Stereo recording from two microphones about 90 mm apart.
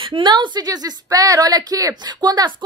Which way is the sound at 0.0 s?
65° right (ahead or behind).